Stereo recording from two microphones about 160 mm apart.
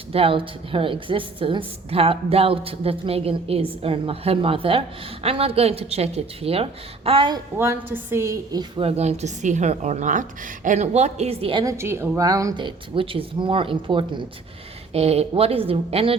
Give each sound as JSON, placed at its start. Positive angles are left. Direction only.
{"t": 0.1, "sound": "a woman's voice", "side_deg": -35}
{"t": 7.5, "sound": "a woman's voice", "side_deg": -15}
{"t": 8.7, "sound": "a woman's voice", "side_deg": -40}
{"t": 11.6, "sound": "a woman's voice", "side_deg": -15}
{"t": 12.6, "sound": "a woman's voice", "side_deg": -35}